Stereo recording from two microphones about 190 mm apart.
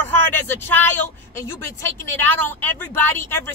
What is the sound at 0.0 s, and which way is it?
A woman's voice, 10° left (ahead or behind).